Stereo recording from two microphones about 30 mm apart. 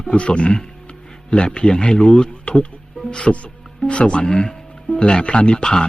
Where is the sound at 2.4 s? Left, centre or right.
Left.